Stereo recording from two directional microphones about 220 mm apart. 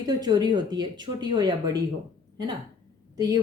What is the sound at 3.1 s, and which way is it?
Speech, 15° right (ahead or behind).